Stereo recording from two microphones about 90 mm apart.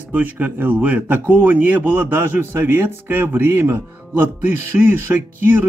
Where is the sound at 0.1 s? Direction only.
20° right (ahead or behind).